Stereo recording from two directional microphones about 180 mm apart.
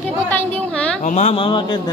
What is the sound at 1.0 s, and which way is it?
Speech, 40° left (ahead or behind).